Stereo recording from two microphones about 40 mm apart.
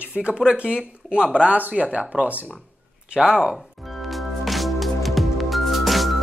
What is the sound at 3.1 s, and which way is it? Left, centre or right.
Speech, centre.